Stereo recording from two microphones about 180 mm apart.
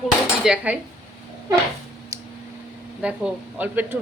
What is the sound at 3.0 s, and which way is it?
Speech, 5° right (ahead or behind).